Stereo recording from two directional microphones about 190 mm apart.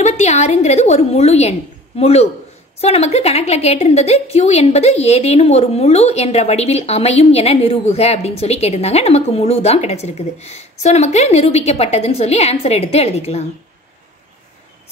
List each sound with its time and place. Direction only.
0.0 s a woman's voice: 35° left (ahead or behind)